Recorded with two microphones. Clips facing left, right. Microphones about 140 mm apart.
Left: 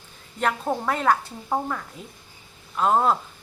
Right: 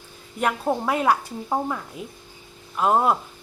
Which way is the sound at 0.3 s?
10° right (ahead or behind).